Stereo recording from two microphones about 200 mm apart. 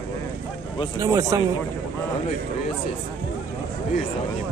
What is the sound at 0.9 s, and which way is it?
Speech, 15° right (ahead or behind).